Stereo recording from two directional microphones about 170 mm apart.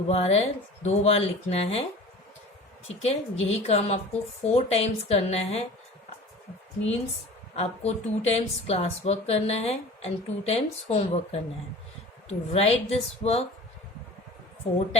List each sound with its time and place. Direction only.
0.1 s speech: 40° left (ahead or behind)
2.8 s speech: 40° left (ahead or behind)
7.5 s speech: 40° left (ahead or behind)